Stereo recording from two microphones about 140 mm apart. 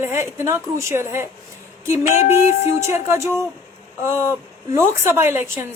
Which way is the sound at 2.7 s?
20° right (ahead or behind).